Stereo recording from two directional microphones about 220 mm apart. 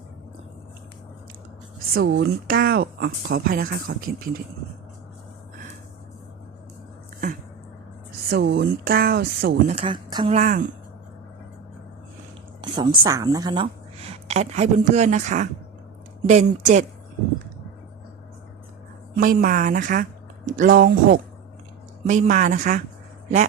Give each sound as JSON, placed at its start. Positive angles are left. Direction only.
{"t": 1.9, "sound": "speech", "side_deg": -45}
{"t": 8.3, "sound": "speech", "side_deg": -50}
{"t": 9.6, "sound": "speech", "side_deg": -25}
{"t": 10.3, "sound": "a woman's voice", "side_deg": -35}
{"t": 12.6, "sound": "a sound", "side_deg": -20}
{"t": 13.0, "sound": "a woman's voice", "side_deg": -20}
{"t": 19.1, "sound": "a woman's voice", "side_deg": -40}